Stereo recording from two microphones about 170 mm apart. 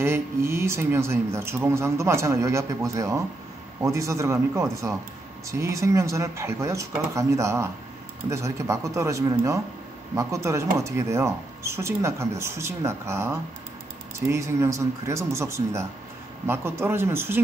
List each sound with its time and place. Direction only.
0.0 s speech: 15° right (ahead or behind)